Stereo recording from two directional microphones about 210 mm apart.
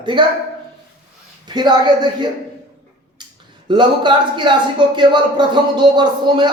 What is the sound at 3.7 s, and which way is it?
Speech, 20° right (ahead or behind).